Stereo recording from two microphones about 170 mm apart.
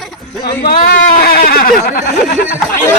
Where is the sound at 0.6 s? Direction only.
60° left (ahead or behind).